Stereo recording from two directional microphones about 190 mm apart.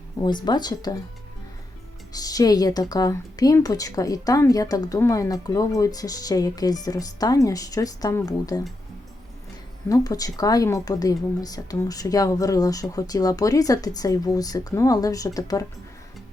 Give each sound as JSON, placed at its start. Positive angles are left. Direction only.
{"t": 0.2, "sound": "speech", "side_deg": 25}
{"t": 2.1, "sound": "speech", "side_deg": 20}
{"t": 9.9, "sound": "speech", "side_deg": 20}